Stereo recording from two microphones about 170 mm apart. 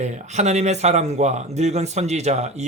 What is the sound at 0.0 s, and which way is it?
Speech, 40° right (ahead or behind).